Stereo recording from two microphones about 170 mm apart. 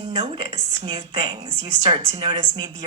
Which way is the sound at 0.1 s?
30° right (ahead or behind).